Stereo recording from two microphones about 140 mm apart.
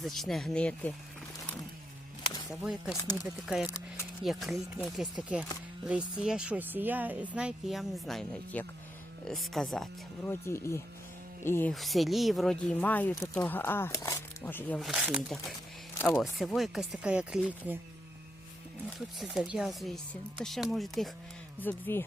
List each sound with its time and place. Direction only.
0.0 s speech: centre (ahead or behind)
2.5 s speech: 5° right (ahead or behind)
3.0 s speech: 25° left (ahead or behind)
3.4 s speech: 5° right (ahead or behind)
3.7 s speech: 25° left (ahead or behind)
4.2 s speech: centre (ahead or behind)
10.2 s speech: 20° left (ahead or behind)
11.7 s speech: centre (ahead or behind); by 14.8 s 15° left (ahead or behind)
14.8 s speech: centre (ahead or behind)
16.0 s speech: 20° left (ahead or behind)
16.4 s speech: centre (ahead or behind)
18.9 s speech: centre (ahead or behind)
21.6 s speech: 15° left (ahead or behind)